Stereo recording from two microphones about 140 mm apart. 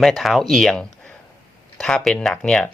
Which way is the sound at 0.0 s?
Centre (ahead or behind).